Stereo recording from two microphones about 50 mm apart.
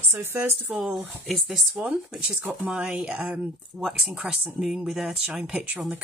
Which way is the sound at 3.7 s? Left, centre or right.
Centre.